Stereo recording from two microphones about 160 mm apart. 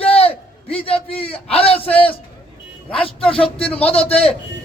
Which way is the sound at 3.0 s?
35° left (ahead or behind).